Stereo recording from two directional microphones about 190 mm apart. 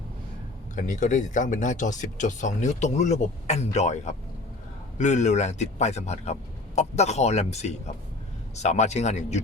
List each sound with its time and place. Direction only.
0.8 s speech: 40° left (ahead or behind)